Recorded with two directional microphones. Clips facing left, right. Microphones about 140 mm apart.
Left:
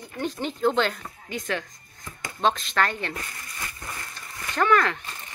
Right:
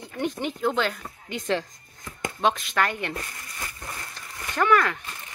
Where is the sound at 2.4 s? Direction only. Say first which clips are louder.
Left 1 dB; 10° right (ahead or behind).